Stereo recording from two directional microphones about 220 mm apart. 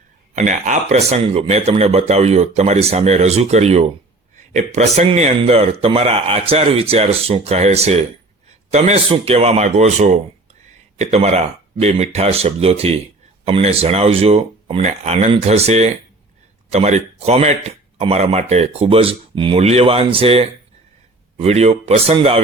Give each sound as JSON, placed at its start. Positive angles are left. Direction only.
{"t": 0.3, "sound": "speech", "side_deg": -35}